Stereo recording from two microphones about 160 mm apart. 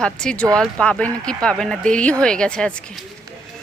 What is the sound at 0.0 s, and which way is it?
A woman's voice, 5° left (ahead or behind).